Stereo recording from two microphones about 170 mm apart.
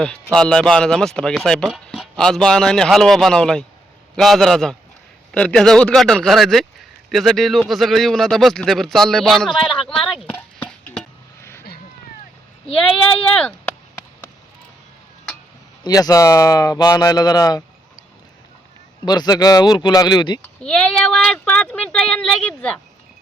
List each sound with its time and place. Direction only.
0.3 s speech: 5° left (ahead or behind)
9.6 s speech: 30° left (ahead or behind)
9.9 s speech: centre (ahead or behind)
10.3 s chopping: 10° left (ahead or behind)
12.6 s speech: 5° left (ahead or behind)
15.8 s speech: 20° left (ahead or behind)
19.0 s speech: 25° left (ahead or behind)
20.6 s speech: 5° left (ahead or behind)